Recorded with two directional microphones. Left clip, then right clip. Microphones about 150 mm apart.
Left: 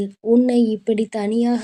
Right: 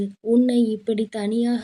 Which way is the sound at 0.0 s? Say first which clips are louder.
Left 3 dB; 10° left (ahead or behind).